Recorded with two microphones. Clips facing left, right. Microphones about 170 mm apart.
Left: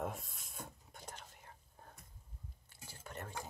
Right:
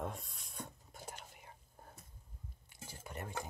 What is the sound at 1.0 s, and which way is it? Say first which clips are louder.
Whispering: right 2 dB; 10° right (ahead or behind).